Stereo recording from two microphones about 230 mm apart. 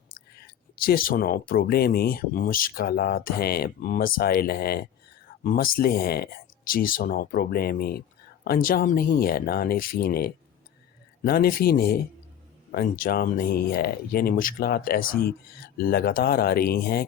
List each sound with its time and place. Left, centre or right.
0.3 s speech: left